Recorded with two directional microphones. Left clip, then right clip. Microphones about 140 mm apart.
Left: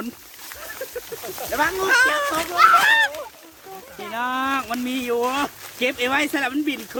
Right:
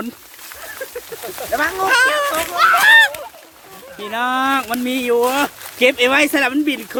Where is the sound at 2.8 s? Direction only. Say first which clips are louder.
Right 7 dB; 20° right (ahead or behind).